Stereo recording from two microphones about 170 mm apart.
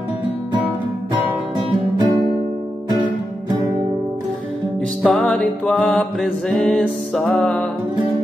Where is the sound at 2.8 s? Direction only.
25° right (ahead or behind).